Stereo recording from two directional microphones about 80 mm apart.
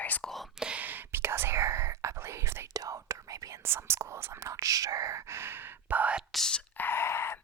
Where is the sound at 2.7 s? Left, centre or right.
Right.